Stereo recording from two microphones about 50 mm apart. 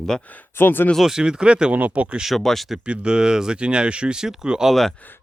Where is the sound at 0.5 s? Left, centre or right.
Left.